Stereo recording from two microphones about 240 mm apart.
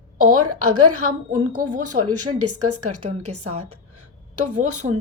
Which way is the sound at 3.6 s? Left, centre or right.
Right.